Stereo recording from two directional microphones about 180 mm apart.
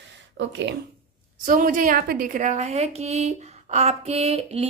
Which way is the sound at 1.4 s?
50° right (ahead or behind).